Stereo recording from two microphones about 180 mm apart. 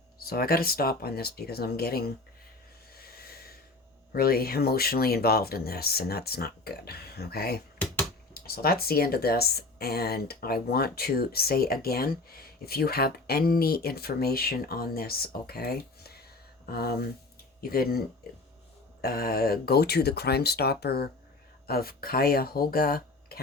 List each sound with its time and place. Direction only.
0.2 s speech: 55° left (ahead or behind)
3.2 s snort: 55° left (ahead or behind)
4.1 s speech: 55° left (ahead or behind)
19.0 s speech: 55° left (ahead or behind)